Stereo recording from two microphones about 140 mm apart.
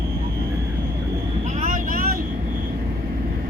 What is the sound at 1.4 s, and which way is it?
Vehicle, 60° right (ahead or behind).